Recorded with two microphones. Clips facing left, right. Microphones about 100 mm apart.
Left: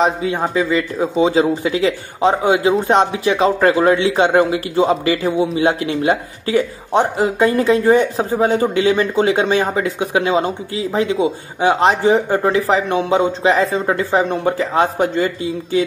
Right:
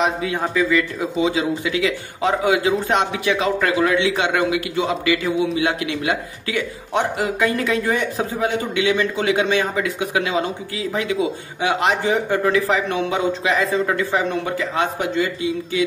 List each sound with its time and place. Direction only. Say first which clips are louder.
0.0 s speech: left 4 dB; 30° left (ahead or behind)